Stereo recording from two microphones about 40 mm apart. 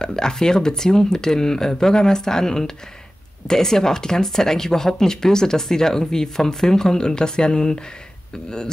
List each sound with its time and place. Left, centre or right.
0.0 s speech: centre